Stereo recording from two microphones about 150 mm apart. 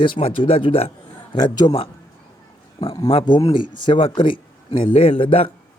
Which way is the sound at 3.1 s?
35° left (ahead or behind).